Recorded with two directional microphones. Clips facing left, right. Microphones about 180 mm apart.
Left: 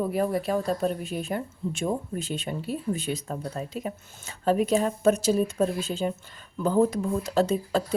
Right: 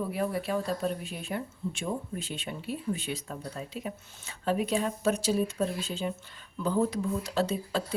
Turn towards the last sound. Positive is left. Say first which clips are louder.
# left 5 dB
turn(degrees=45)  # may be behind; listen again after turning